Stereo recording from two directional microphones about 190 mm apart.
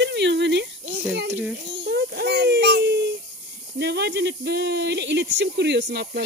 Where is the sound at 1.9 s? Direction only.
60° right (ahead or behind).